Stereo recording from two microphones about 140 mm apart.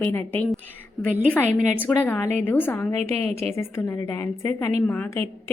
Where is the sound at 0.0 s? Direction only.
15° left (ahead or behind).